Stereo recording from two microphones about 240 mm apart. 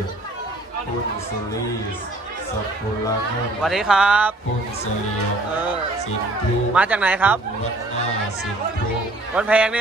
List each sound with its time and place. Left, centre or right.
3.6 s speech: centre
6.7 s speech: centre
9.3 s speech: centre